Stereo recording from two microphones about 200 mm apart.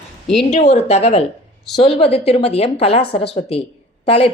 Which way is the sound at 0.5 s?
35° left (ahead or behind).